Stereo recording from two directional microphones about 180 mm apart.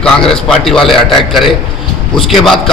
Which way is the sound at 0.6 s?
Centre (ahead or behind).